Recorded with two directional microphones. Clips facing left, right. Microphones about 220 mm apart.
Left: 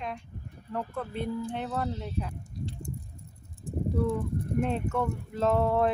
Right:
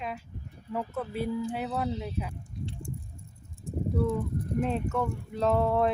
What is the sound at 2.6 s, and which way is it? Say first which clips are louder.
Bird: left 1 dB; 40° left (ahead or behind).